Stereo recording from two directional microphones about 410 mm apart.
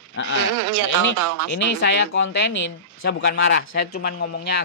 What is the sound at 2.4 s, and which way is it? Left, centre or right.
Speech, left.